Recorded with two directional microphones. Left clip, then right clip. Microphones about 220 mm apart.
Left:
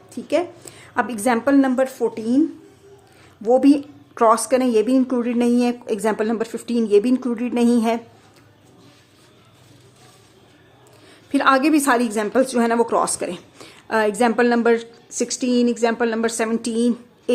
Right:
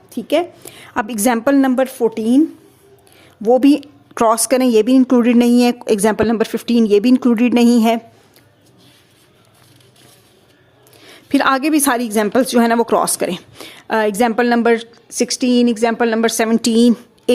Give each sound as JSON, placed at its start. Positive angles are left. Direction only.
{"t": 0.1, "sound": "a woman's voice", "side_deg": -30}
{"t": 3.4, "sound": "a woman's voice", "side_deg": -35}
{"t": 11.0, "sound": "a woman's voice", "side_deg": -40}